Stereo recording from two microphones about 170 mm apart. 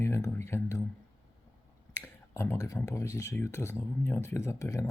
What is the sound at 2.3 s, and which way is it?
Speech, 15° left (ahead or behind).